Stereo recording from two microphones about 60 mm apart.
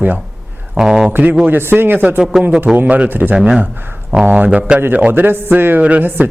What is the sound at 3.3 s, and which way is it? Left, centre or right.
Speech, centre.